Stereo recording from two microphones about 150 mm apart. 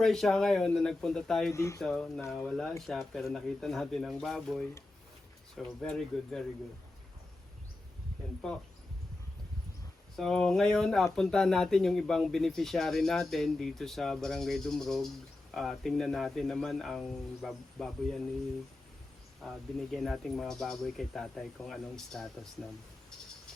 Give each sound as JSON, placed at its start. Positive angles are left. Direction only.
{"t": 0.0, "sound": "speech", "side_deg": 0}
{"t": 1.5, "sound": "speech", "side_deg": 20}
{"t": 1.8, "sound": "speech", "side_deg": 5}
{"t": 5.6, "sound": "speech", "side_deg": 5}
{"t": 10.2, "sound": "speech", "side_deg": 0}
{"t": 19.4, "sound": "speech", "side_deg": 0}